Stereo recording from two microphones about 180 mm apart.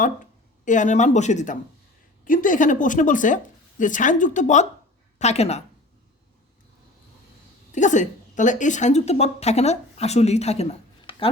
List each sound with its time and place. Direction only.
0.0 s a woman's voice: 45° left (ahead or behind)
7.7 s a woman's voice: 45° left (ahead or behind)